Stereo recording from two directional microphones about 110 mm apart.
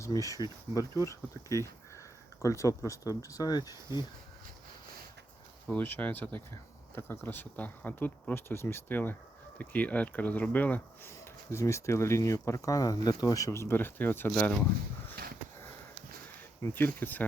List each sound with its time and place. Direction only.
0.0 s speech: 30° left (ahead or behind)
5.6 s speech: 15° left (ahead or behind)
11.1 s speech: 25° left (ahead or behind)
16.6 s speech: 25° left (ahead or behind)